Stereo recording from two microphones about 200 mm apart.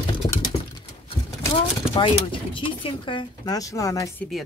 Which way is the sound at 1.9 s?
25° left (ahead or behind).